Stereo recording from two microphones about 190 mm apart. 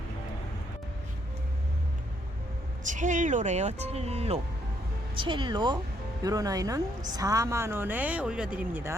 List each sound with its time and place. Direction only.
2.8 s a woman's voice: 40° right (ahead or behind); by 9.0 s 10° right (ahead or behind)